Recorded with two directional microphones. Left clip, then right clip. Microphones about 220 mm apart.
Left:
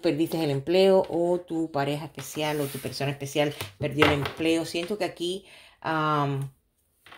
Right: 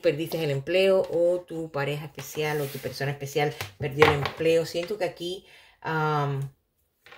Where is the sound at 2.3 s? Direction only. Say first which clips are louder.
Even; 45° left (ahead or behind).